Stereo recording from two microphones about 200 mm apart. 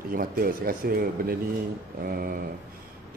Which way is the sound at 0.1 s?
45° right (ahead or behind).